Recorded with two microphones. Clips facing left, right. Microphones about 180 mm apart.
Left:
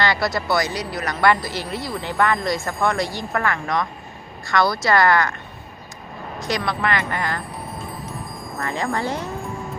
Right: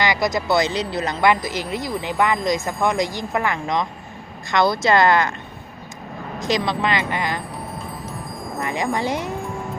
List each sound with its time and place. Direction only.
0.0 s a woman's voice: 15° right (ahead or behind)
6.5 s a woman's voice: 20° right (ahead or behind)
8.6 s a woman's voice: 15° right (ahead or behind)